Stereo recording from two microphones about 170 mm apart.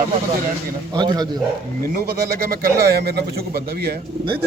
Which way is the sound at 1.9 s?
60° right (ahead or behind).